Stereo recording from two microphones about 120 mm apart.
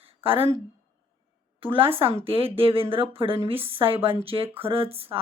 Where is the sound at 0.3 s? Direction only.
50° right (ahead or behind).